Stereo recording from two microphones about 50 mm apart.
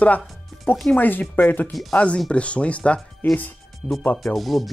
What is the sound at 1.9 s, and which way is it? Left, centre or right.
Speech, left.